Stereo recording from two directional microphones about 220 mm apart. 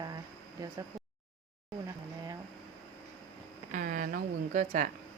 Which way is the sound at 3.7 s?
40° right (ahead or behind).